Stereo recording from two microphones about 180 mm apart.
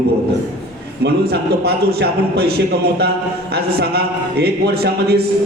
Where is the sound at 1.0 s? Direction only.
65° right (ahead or behind).